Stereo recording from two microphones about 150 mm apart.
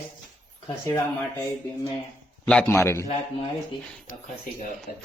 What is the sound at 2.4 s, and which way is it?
Speech, 5° left (ahead or behind).